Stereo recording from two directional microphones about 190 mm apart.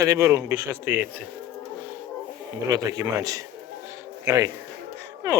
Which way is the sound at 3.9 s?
15° right (ahead or behind).